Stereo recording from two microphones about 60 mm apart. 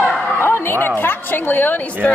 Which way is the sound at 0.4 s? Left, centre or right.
Left.